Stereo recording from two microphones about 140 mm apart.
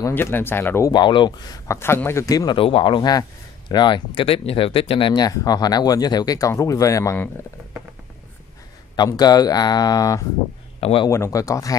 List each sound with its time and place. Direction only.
0.0 s speech: 15° left (ahead or behind)
0.9 s speech: 35° left (ahead or behind)
8.9 s speech: 30° left (ahead or behind)
10.8 s speech: 40° left (ahead or behind)
11.1 s speech: 20° left (ahead or behind)